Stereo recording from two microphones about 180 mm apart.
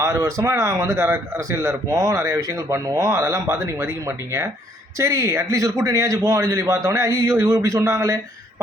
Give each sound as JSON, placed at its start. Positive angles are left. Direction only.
{"t": 0.0, "sound": "a man's voice", "side_deg": -15}
{"t": 4.9, "sound": "a man's voice", "side_deg": -15}